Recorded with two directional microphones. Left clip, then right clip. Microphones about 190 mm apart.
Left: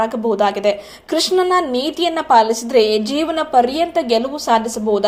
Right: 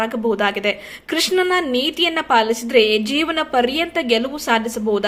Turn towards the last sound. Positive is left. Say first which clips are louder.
# left 3 dB
turn(degrees=-10)  # may be behind; listen again after turning